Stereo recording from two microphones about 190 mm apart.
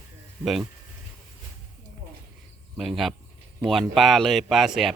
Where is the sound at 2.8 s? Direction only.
Centre (ahead or behind).